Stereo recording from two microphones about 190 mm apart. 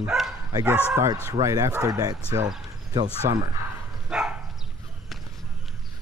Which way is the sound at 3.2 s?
45° right (ahead or behind).